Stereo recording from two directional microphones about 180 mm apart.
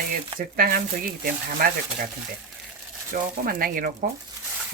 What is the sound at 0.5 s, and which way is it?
Speech, 55° right (ahead or behind).